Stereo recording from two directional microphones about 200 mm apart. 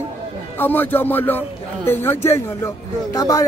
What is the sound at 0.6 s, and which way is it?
Speech, 10° left (ahead or behind).